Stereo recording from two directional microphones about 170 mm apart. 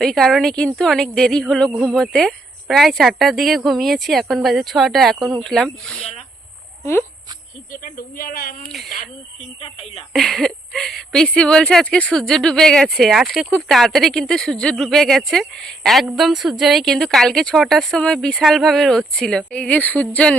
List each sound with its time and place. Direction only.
0.0 s speech: centre (ahead or behind)
7.7 s speech: 60° left (ahead or behind)
9.6 s speech: 35° left (ahead or behind)
10.1 s speech: centre (ahead or behind)